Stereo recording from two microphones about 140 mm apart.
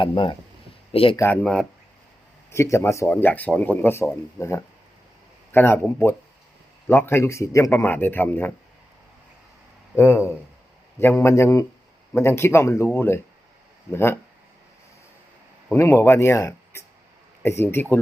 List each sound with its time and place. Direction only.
0.0 s speech: 35° left (ahead or behind)
1.1 s speech: 20° left (ahead or behind)
2.5 s a man's voice: 20° left (ahead or behind)
9.9 s a man's voice: 20° left (ahead or behind)
15.7 s a man's voice: 20° left (ahead or behind)